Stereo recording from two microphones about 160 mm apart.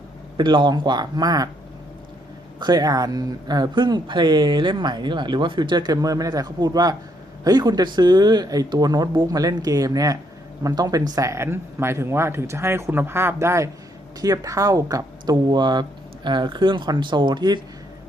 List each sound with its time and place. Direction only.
0.3 s speech: 30° right (ahead or behind)
2.6 s speech: 25° right (ahead or behind)